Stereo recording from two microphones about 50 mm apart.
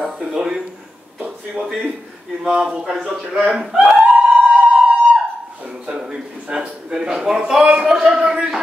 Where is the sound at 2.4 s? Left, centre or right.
Centre.